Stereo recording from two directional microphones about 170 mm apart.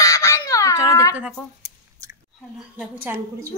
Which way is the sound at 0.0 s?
20° left (ahead or behind).